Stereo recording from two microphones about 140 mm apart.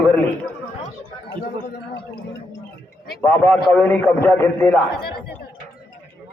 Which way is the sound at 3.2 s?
10° left (ahead or behind).